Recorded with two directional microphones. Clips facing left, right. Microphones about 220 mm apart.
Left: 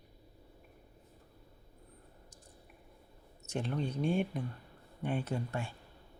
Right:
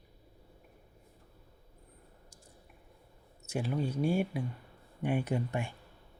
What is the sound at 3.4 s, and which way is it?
Speech, 5° right (ahead or behind).